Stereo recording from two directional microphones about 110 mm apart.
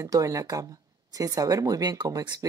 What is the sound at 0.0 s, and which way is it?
Speech, 30° right (ahead or behind).